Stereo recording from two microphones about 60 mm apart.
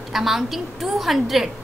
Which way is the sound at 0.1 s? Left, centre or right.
Centre.